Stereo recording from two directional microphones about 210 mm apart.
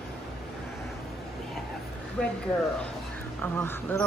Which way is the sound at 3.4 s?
10° left (ahead or behind).